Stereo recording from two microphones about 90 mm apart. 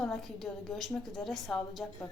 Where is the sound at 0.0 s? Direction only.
5° left (ahead or behind).